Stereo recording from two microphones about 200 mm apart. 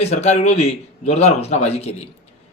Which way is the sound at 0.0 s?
35° left (ahead or behind).